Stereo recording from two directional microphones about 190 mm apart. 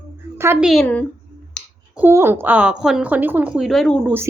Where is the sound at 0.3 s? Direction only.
15° right (ahead or behind).